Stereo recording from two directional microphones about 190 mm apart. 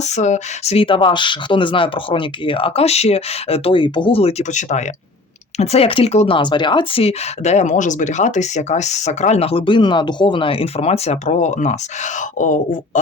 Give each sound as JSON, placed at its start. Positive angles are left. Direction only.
{"t": 0.0, "sound": "speech", "side_deg": 40}